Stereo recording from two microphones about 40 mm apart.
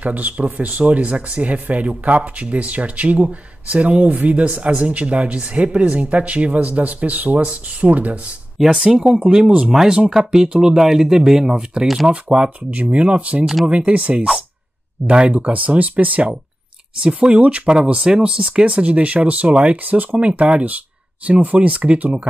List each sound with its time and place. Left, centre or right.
0.0 s speech: right
8.6 s speech: centre
9.7 s speech: centre
11.5 s speech: right
15.5 s speech: right
20.2 s speech: right